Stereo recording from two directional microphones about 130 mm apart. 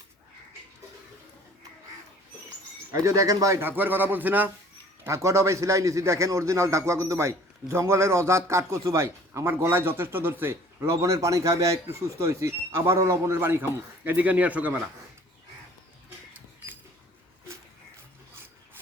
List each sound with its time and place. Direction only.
2.9 s a man's voice: 25° right (ahead or behind)